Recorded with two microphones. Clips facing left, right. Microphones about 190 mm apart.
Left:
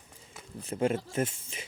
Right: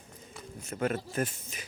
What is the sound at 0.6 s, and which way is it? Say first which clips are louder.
A man's voice: left 3 dB; 30° left (ahead or behind).